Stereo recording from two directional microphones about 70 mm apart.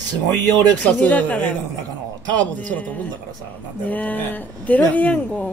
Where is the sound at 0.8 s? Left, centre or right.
Left.